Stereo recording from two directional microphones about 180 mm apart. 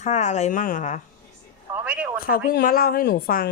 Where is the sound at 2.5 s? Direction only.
55° left (ahead or behind).